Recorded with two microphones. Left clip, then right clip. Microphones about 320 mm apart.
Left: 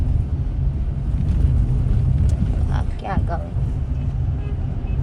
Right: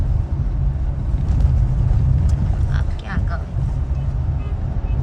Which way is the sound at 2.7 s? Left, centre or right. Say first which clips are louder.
Left 6 dB; centre.